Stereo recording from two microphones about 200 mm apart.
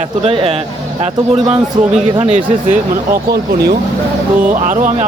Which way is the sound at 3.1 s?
55° right (ahead or behind).